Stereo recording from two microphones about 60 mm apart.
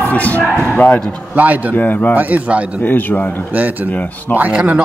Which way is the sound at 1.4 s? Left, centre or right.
Right.